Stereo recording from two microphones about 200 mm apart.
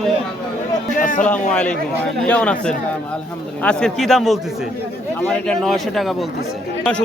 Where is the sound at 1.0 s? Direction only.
45° left (ahead or behind).